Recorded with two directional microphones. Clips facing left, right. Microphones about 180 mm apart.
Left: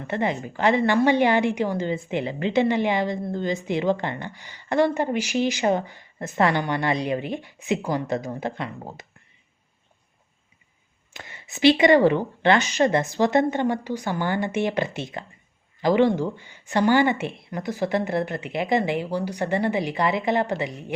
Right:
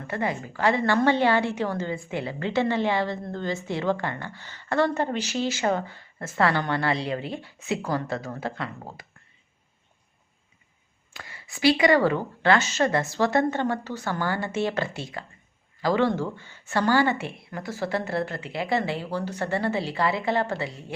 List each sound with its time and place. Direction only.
0.1 s a woman's voice: 20° left (ahead or behind)
11.1 s a woman's voice: 20° left (ahead or behind)